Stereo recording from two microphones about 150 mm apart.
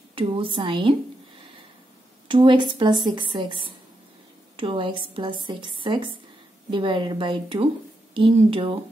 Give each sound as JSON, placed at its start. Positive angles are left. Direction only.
{"t": 0.1, "sound": "a woman's voice", "side_deg": -35}
{"t": 2.2, "sound": "a woman's voice", "side_deg": -30}